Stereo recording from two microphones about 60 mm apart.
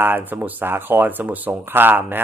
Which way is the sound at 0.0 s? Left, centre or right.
Right.